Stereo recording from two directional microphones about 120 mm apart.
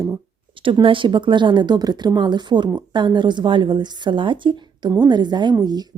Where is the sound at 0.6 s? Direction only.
45° right (ahead or behind).